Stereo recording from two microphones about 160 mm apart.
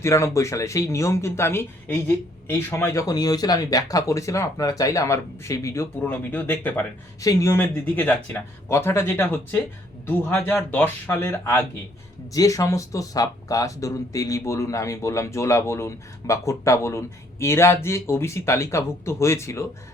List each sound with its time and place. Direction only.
0.0 s speech: 15° left (ahead or behind)